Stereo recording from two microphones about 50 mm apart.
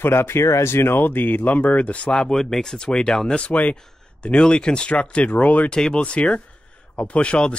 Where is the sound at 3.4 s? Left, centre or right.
Left.